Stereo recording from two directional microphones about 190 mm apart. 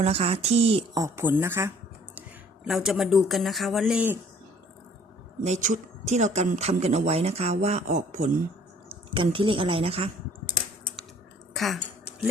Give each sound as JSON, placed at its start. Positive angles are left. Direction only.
{"t": 0.0, "sound": "speech", "side_deg": -35}
{"t": 0.9, "sound": "speech", "side_deg": -15}
{"t": 2.6, "sound": "speech", "side_deg": 0}
{"t": 5.5, "sound": "speech", "side_deg": -40}
{"t": 8.9, "sound": "speech", "side_deg": -30}
{"t": 11.5, "sound": "speech", "side_deg": 0}